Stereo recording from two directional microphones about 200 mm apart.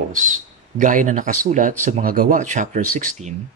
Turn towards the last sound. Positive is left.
turn(degrees=-40)  # may be behind; listen again after turning